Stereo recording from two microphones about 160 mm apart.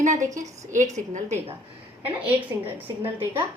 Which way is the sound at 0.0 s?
50° right (ahead or behind).